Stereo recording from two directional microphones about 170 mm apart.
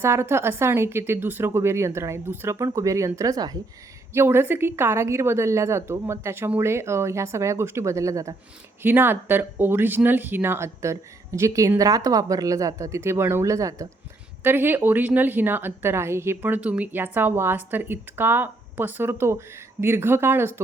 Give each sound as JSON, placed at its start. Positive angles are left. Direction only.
{"t": 0.0, "sound": "a woman's voice", "side_deg": -15}